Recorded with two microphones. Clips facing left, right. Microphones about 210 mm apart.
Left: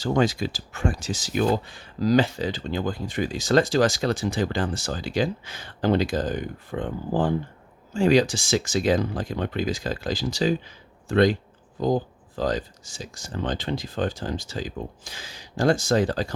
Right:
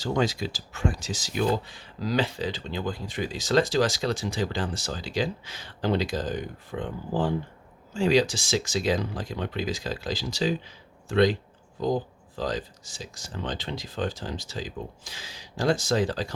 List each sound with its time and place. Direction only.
0.0 s speech: 50° left (ahead or behind)
12.4 s speech: 50° left (ahead or behind)